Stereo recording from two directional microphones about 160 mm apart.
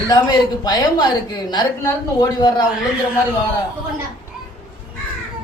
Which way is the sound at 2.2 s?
25° left (ahead or behind).